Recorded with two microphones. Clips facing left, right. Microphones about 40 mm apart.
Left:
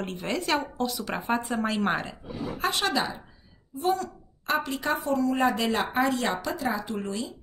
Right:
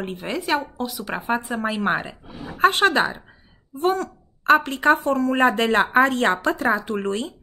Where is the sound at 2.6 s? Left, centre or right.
Right.